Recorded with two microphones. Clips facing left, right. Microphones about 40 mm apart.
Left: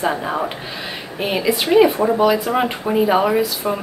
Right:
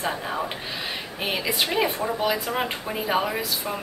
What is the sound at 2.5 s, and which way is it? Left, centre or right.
Speech, centre.